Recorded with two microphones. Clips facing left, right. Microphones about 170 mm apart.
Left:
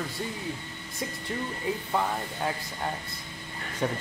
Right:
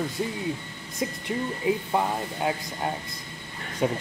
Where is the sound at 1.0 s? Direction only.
15° right (ahead or behind).